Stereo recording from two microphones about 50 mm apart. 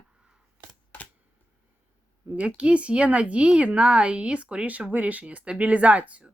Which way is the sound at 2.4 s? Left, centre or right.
Right.